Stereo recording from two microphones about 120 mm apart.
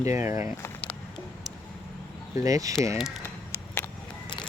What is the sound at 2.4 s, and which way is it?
Speech, 30° right (ahead or behind).